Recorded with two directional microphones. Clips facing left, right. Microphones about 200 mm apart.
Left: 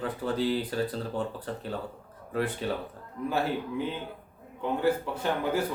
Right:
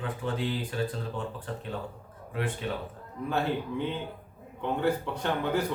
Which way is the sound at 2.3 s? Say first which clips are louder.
Left 3 dB; 40° left (ahead or behind).